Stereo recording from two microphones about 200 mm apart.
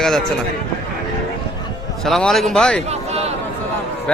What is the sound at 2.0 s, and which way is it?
Speech, centre (ahead or behind).